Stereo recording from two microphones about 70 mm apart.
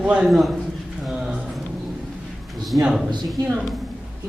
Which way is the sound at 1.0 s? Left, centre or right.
Centre.